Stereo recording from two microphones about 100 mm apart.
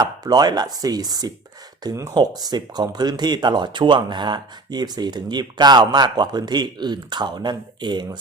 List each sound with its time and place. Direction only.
0.0 s speech: 40° right (ahead or behind)